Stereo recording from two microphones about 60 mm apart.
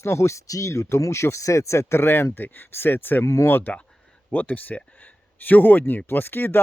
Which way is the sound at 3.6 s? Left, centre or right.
Left.